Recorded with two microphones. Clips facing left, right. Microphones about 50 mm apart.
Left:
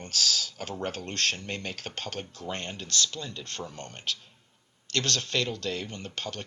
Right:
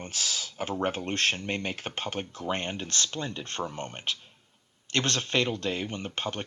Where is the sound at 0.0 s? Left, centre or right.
Right.